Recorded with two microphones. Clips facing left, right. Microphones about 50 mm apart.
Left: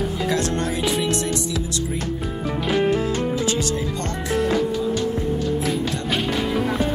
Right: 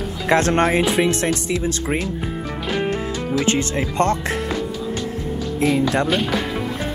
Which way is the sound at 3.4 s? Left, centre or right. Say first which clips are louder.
Right 2 dB; right.